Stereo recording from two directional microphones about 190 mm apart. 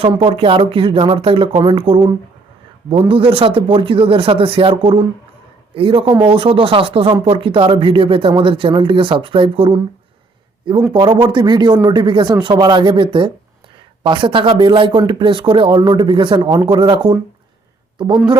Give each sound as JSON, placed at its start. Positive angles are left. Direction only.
{"t": 0.0, "sound": "speech", "side_deg": -30}
{"t": 10.9, "sound": "speech", "side_deg": -25}